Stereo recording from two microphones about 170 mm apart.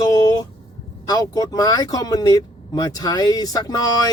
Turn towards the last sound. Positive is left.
turn(degrees=20)  # may be behind; listen again after turning